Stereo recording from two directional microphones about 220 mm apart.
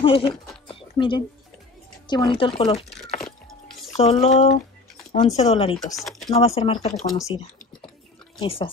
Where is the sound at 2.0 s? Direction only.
20° left (ahead or behind).